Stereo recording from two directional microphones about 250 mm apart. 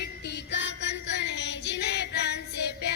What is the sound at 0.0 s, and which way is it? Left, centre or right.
Music, left.